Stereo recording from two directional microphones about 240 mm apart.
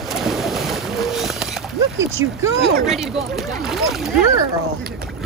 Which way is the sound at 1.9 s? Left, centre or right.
Right.